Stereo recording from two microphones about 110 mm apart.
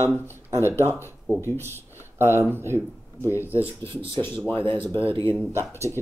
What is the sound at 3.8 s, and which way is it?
Speech, 50° right (ahead or behind).